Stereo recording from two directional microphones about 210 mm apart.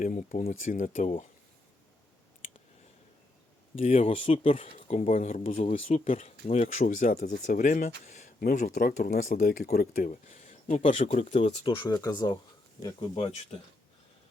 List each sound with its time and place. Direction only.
0.0 s speech: 35° left (ahead or behind)
3.8 s speech: 30° left (ahead or behind)